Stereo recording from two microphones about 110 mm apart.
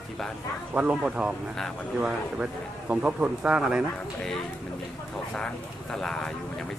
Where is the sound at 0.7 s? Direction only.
10° right (ahead or behind).